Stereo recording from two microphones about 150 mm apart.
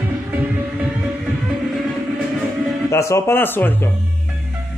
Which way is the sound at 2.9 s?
20° left (ahead or behind).